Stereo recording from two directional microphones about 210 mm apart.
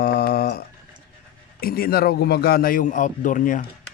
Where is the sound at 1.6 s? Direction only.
45° left (ahead or behind).